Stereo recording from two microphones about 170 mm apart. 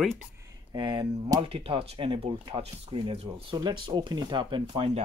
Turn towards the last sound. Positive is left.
turn(degrees=-30)  # may be behind; listen again after turning